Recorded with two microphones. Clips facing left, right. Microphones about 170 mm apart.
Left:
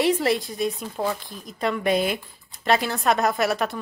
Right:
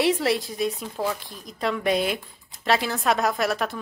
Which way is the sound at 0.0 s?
Centre (ahead or behind).